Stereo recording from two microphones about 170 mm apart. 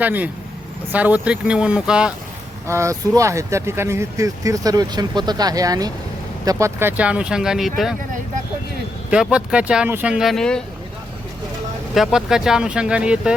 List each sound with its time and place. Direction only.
0.0 s speech: 10° right (ahead or behind)
2.6 s speech: 15° right (ahead or behind)
9.0 s speech: 5° right (ahead or behind)
11.9 s speech: 5° right (ahead or behind)